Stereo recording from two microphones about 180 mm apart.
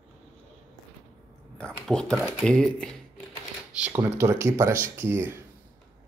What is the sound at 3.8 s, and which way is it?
Speech, 15° right (ahead or behind).